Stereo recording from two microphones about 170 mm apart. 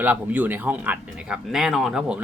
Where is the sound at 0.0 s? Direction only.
10° right (ahead or behind).